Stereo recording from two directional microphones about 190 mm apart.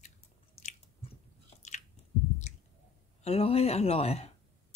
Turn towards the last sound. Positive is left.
turn(degrees=30)  # may be behind; listen again after turning